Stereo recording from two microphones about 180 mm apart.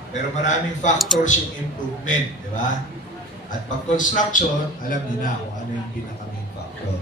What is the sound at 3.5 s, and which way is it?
Speech, 45° left (ahead or behind).